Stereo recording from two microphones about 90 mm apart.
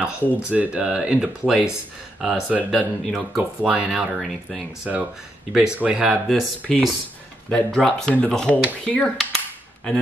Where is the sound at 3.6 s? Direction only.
10° right (ahead or behind).